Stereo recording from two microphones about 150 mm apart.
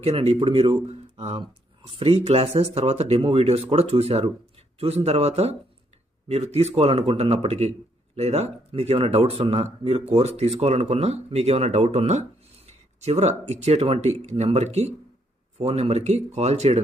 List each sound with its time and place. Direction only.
0.0 s speech: 45° right (ahead or behind)